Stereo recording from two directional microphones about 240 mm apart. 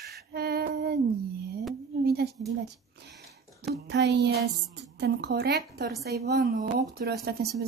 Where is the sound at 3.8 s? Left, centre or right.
Right.